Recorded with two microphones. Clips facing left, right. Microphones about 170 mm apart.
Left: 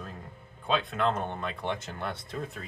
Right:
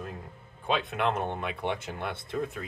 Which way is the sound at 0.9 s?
15° right (ahead or behind).